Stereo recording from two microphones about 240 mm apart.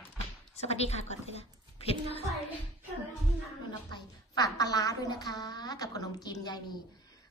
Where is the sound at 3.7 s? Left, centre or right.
Centre.